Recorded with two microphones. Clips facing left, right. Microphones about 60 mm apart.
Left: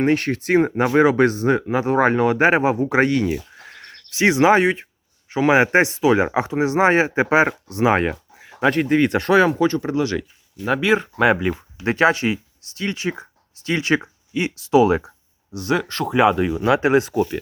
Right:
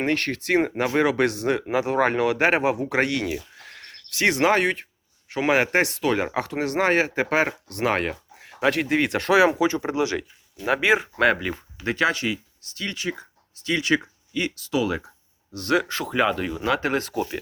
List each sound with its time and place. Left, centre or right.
0.0 s speech: centre
3.3 s a sound: centre
5.3 s speech: centre
9.6 s speech: centre
11.2 s speech: centre
11.9 s speech: left
15.5 s speech: centre